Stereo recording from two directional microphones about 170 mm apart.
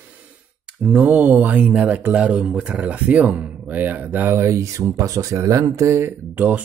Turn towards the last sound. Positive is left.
turn(degrees=-10)  # may be behind; listen again after turning